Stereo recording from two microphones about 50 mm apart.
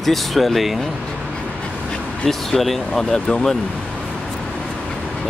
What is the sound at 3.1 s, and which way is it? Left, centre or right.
Speech, centre.